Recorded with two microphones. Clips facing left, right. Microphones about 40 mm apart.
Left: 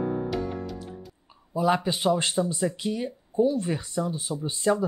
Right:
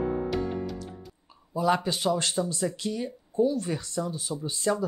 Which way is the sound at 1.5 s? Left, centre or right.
Centre.